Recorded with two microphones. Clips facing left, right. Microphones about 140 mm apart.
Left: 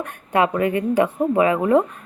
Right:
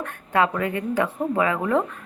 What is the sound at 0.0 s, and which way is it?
Speech, 20° left (ahead or behind).